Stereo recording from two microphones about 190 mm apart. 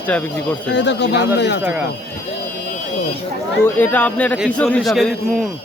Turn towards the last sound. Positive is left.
turn(degrees=0)  # may be behind; listen again after turning